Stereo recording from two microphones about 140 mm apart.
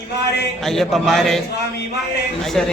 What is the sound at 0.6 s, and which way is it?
Speech, 5° left (ahead or behind).